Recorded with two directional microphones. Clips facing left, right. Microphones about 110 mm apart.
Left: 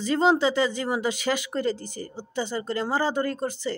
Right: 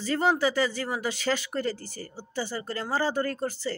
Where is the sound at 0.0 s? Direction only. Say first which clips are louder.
Left 3 dB; 20° left (ahead or behind).